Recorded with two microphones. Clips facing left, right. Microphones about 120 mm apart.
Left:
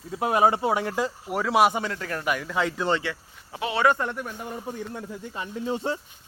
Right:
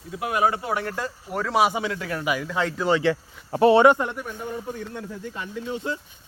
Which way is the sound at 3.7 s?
25° right (ahead or behind).